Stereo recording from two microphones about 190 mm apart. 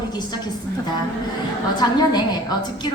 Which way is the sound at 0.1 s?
20° left (ahead or behind).